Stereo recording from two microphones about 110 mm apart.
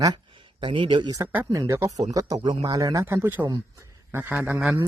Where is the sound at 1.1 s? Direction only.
20° right (ahead or behind).